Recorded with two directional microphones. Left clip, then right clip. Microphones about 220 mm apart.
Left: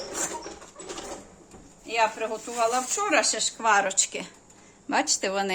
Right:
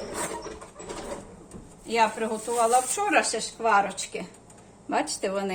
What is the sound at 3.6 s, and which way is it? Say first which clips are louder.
Speech: even; 50° left (ahead or behind).